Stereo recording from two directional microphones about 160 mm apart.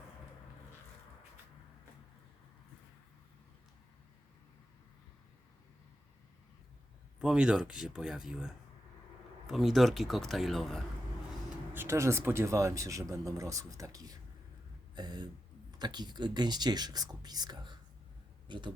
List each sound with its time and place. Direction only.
7.2 s a man's voice: 5° right (ahead or behind)
11.7 s speech: 15° right (ahead or behind)